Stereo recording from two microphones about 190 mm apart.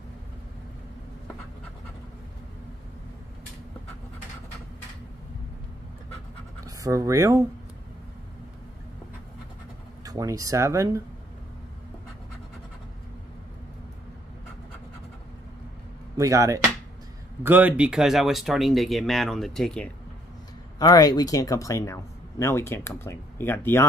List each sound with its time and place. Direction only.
6.6 s speech: 15° right (ahead or behind)
10.0 s speech: 20° right (ahead or behind)
16.2 s speech: 15° right (ahead or behind); by 19.9 s 5° left (ahead or behind)
20.8 s speech: 20° left (ahead or behind)